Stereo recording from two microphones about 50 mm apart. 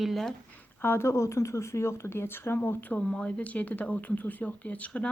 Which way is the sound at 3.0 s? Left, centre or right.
Left.